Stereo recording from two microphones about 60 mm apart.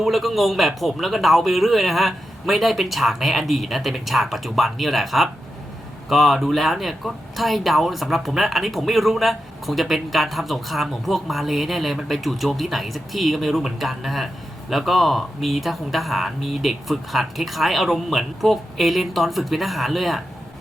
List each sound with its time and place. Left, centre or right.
0.0 s speech: centre